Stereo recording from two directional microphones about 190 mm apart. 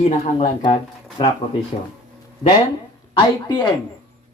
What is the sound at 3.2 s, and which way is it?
Speech, 20° left (ahead or behind).